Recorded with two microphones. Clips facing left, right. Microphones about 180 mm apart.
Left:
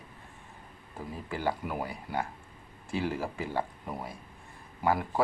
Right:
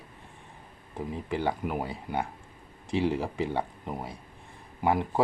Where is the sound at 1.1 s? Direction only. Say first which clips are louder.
Right 2 dB; 20° right (ahead or behind).